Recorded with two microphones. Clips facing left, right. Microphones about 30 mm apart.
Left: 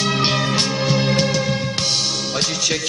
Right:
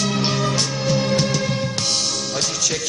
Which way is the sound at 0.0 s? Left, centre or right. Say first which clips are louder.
Left 2 dB; left.